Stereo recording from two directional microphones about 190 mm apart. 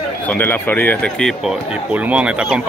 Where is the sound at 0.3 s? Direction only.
10° left (ahead or behind).